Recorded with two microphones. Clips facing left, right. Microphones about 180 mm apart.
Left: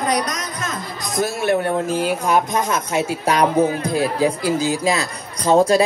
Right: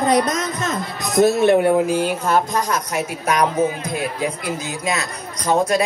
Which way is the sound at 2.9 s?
30° left (ahead or behind).